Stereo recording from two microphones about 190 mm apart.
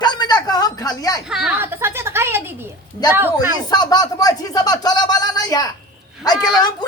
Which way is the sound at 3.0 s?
10° right (ahead or behind).